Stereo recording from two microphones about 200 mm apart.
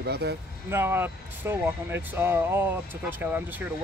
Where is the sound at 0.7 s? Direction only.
10° right (ahead or behind).